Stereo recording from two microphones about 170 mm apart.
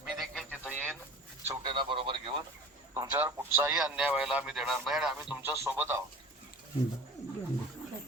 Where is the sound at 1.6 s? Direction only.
30° right (ahead or behind).